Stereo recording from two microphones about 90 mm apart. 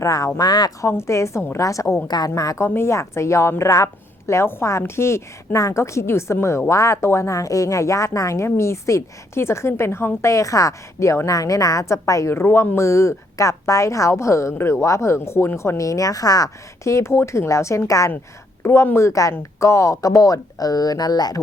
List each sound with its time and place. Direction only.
0.0 s a woman's voice: 40° left (ahead or behind)
0.9 s a woman's voice: 30° left (ahead or behind)
2.0 s a woman's voice: 50° left (ahead or behind)
2.6 s a woman's voice: 25° left (ahead or behind); by 21.4 s 45° left (ahead or behind)